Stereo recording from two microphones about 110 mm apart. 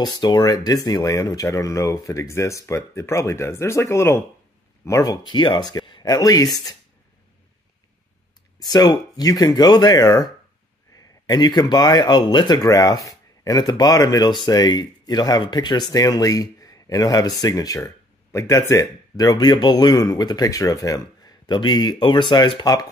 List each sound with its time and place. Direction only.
0.0 s speech: 40° left (ahead or behind)
8.5 s speech: 35° left (ahead or behind)